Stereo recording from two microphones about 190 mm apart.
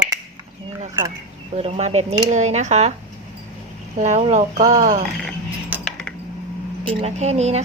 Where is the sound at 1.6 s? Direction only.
35° right (ahead or behind).